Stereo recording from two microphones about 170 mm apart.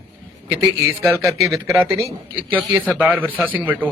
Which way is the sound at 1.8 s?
15° right (ahead or behind).